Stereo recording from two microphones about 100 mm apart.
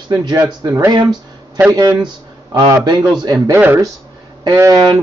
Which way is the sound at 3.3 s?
25° right (ahead or behind).